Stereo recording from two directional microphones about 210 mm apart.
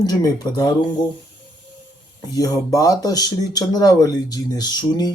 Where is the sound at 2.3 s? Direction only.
15° left (ahead or behind).